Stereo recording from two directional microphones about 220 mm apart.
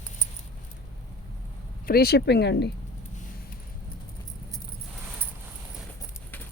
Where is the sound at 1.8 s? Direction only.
45° left (ahead or behind).